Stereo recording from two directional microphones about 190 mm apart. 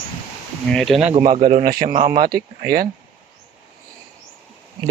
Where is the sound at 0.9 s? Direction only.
30° right (ahead or behind).